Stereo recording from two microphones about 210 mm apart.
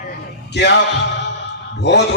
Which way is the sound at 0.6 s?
55° left (ahead or behind).